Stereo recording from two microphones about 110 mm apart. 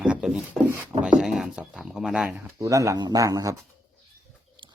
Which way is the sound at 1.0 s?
5° right (ahead or behind).